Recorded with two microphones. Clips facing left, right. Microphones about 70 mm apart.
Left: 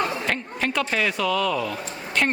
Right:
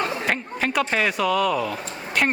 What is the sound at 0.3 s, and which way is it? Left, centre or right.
Chatter, centre.